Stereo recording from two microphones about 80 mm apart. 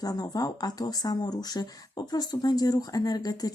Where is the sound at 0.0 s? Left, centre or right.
Left.